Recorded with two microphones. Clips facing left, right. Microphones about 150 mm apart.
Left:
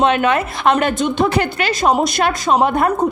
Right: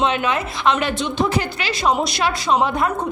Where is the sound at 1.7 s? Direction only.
45° left (ahead or behind).